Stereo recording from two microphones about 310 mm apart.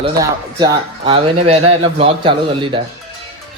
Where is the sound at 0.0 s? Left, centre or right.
Centre.